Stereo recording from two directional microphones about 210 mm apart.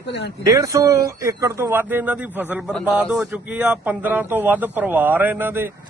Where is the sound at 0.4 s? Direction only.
15° right (ahead or behind).